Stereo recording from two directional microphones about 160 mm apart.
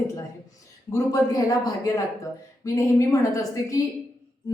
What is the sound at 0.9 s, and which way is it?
A woman's voice, 20° left (ahead or behind).